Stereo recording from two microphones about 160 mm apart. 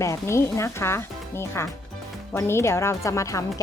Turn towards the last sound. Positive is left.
turn(degrees=20)  # may be behind; listen again after turning